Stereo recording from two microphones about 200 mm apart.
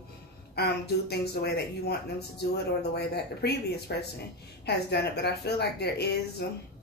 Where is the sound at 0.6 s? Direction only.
55° left (ahead or behind).